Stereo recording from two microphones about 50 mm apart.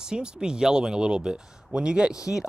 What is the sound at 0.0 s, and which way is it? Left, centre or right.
Speech, centre.